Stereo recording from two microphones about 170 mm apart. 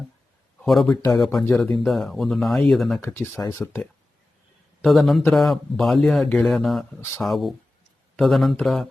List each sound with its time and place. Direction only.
0.6 s speech: centre (ahead or behind)
3.1 s speech: 15° left (ahead or behind)
4.8 s speech: centre (ahead or behind)